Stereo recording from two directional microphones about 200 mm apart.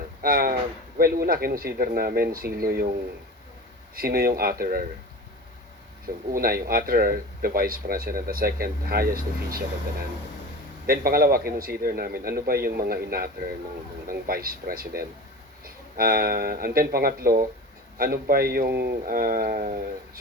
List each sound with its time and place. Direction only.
0.2 s speech: 45° right (ahead or behind)
3.9 s speech: 50° right (ahead or behind)
6.3 s speech: 45° right (ahead or behind)
10.8 s speech: 45° right (ahead or behind)